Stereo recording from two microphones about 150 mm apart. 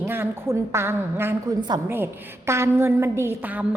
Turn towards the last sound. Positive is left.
turn(degrees=-10)  # may be behind; listen again after turning